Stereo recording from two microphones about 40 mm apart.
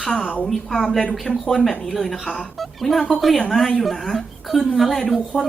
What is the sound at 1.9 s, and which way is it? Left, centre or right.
A woman's voice, centre.